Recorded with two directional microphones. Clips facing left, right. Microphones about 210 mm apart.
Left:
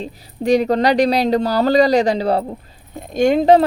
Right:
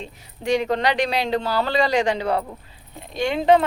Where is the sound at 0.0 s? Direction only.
35° left (ahead or behind).